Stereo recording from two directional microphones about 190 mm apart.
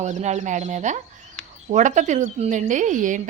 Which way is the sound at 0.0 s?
40° right (ahead or behind).